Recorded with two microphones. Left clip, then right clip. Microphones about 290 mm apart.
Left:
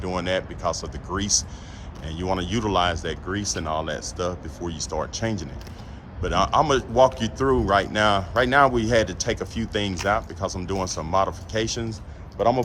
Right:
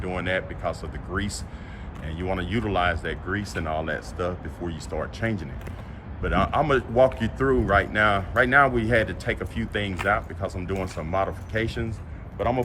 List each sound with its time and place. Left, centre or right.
0.0 s speech: centre